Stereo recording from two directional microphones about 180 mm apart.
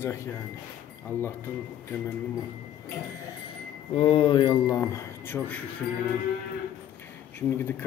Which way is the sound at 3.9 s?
30° left (ahead or behind).